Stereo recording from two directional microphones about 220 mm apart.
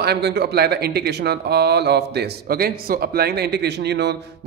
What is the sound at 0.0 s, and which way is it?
Speech, 50° right (ahead or behind).